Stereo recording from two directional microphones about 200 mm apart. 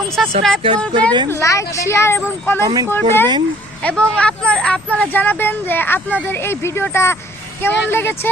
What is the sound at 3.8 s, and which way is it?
Speech, 5° left (ahead or behind).